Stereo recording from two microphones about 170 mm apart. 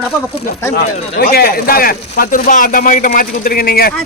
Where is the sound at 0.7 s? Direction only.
65° left (ahead or behind).